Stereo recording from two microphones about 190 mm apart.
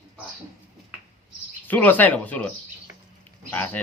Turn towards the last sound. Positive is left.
turn(degrees=10)  # may be behind; listen again after turning